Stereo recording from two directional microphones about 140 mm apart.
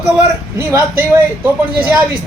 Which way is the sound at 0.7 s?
20° right (ahead or behind).